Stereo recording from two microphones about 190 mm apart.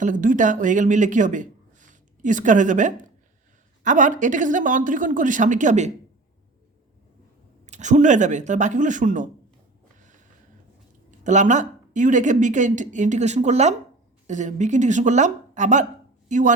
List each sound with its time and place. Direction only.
0.0 s a woman's voice: 45° right (ahead or behind)
7.7 s a woman's voice: 40° right (ahead or behind)
11.2 s a woman's voice: 40° right (ahead or behind)